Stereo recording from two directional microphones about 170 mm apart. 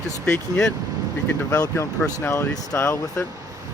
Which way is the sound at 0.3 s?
10° left (ahead or behind).